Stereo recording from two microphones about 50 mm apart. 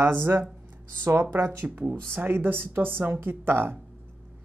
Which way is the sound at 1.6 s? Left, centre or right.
Right.